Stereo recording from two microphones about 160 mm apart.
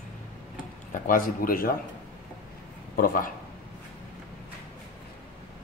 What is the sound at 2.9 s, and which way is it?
Speech, 60° left (ahead or behind).